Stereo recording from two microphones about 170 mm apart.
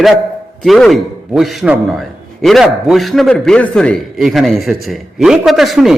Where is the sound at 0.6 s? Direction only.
Centre (ahead or behind).